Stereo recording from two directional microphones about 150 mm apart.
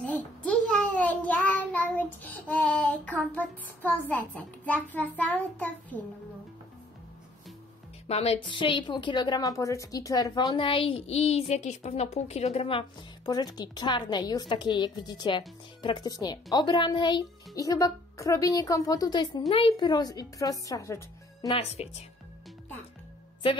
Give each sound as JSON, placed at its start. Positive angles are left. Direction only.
{"t": 0.0, "sound": "child singing", "side_deg": 5}
{"t": 8.1, "sound": "a woman's voice", "side_deg": 45}
{"t": 21.5, "sound": "a woman's voice", "side_deg": 45}